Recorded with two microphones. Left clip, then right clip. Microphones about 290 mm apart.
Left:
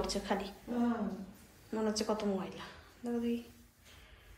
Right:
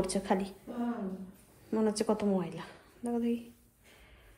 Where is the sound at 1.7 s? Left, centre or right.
Right.